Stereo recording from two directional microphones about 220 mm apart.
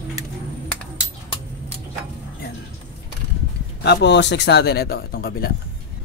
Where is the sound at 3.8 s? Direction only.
50° left (ahead or behind).